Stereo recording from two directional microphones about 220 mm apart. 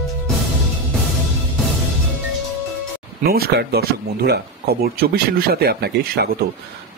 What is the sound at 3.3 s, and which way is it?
Speech, 45° right (ahead or behind).